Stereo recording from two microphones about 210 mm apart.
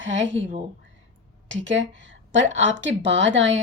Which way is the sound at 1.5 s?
60° right (ahead or behind).